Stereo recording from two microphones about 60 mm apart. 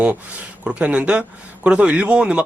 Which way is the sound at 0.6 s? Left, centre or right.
Right.